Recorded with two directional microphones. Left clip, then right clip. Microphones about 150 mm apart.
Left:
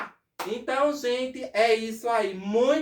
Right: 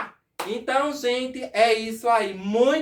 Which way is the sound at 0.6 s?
25° right (ahead or behind).